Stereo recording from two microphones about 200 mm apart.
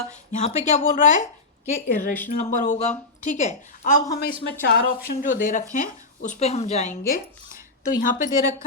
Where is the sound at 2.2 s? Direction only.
40° left (ahead or behind).